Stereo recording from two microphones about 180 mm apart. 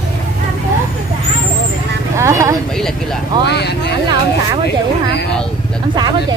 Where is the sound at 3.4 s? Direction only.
65° left (ahead or behind).